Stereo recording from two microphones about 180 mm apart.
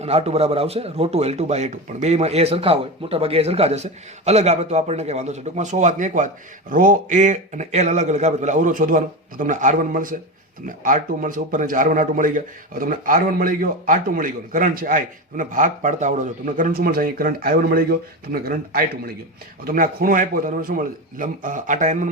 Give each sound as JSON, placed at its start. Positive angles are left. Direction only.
{"t": 0.0, "sound": "a man's voice", "side_deg": -35}